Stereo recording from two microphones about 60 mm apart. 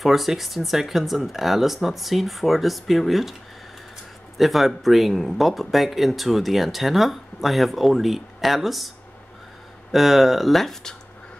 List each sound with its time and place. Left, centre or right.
0.0 s speech: centre
4.4 s speech: centre